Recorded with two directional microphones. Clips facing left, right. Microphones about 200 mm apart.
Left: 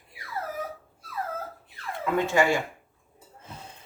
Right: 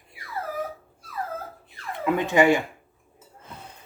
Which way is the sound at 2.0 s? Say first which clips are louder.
Right 4 dB; 20° right (ahead or behind).